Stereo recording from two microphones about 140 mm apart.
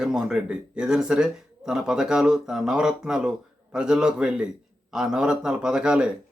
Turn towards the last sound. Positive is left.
turn(degrees=-5)  # may be behind; listen again after turning